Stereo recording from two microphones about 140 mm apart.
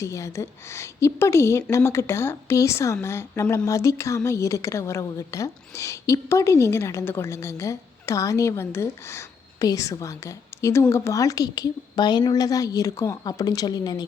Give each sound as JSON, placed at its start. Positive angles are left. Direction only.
{"t": 0.0, "sound": "a woman's voice", "side_deg": 20}